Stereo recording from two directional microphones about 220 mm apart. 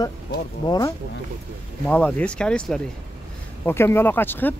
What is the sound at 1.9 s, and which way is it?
Speech, 5° left (ahead or behind).